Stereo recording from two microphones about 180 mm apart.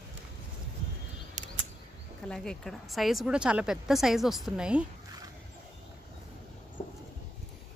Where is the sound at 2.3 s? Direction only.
5° left (ahead or behind).